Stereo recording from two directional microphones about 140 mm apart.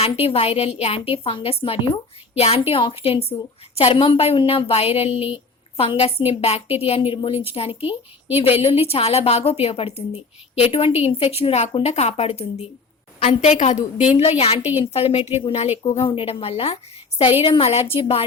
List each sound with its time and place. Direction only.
0.0 s a woman's voice: 45° left (ahead or behind)
7.7 s a woman's voice: 15° right (ahead or behind)
8.4 s a woman's voice: 45° left (ahead or behind)
14.6 s a woman's voice: 15° right (ahead or behind)
14.9 s a woman's voice: 45° left (ahead or behind)